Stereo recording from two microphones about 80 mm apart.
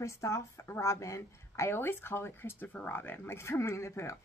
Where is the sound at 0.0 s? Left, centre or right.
Left.